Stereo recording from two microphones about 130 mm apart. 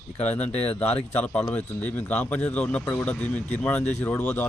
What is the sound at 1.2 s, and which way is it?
Speech, 10° left (ahead or behind).